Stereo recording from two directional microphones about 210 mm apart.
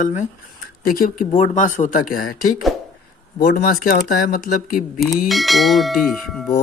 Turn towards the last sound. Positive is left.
turn(degrees=0)  # may be behind; listen again after turning